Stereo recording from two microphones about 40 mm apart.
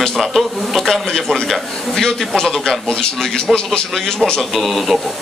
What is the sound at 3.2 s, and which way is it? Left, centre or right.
Speech, centre.